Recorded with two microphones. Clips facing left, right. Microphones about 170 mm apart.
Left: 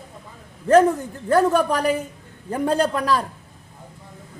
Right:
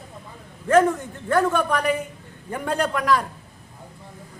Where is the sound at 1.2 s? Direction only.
35° left (ahead or behind).